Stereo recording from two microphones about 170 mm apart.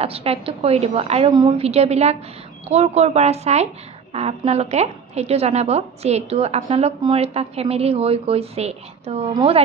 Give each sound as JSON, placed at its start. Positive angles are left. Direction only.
{"t": 0.0, "sound": "a woman's voice", "side_deg": -35}